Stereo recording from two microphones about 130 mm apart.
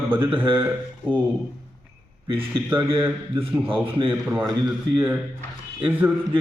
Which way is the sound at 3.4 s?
45° right (ahead or behind).